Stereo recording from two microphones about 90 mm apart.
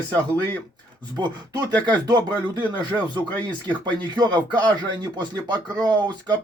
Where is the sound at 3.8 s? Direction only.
55° right (ahead or behind).